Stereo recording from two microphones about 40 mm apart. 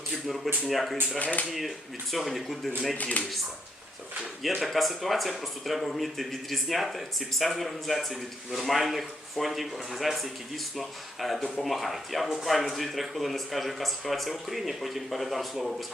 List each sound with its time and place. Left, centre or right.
0.1 s a sound: centre
0.7 s speech: centre
1.2 s speech: left
2.1 s speech: centre
3.0 s speech: left
4.6 s speech: centre